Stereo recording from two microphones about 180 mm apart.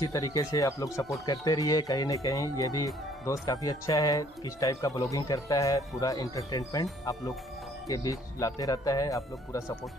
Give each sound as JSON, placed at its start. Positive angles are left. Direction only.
{"t": 0.0, "sound": "speech", "side_deg": 20}